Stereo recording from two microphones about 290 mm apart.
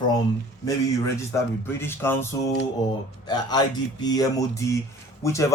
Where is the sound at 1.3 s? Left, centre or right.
Centre.